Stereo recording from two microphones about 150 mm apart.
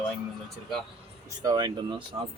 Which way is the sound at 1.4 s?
30° right (ahead or behind).